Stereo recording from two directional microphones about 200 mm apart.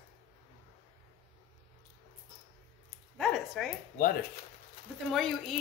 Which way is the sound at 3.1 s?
Centre (ahead or behind).